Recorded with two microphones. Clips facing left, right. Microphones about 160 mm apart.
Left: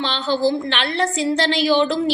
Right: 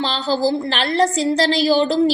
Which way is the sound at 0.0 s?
35° right (ahead or behind).